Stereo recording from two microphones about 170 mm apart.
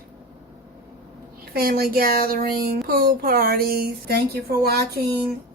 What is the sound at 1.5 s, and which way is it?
A woman's voice, 65° right (ahead or behind).